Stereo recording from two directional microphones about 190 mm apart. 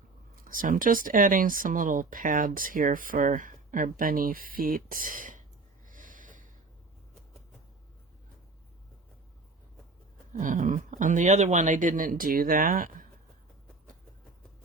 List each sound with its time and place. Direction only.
0.4 s speech: 45° right (ahead or behind)
5.9 s snort: 45° right (ahead or behind)
10.3 s speech: 40° right (ahead or behind)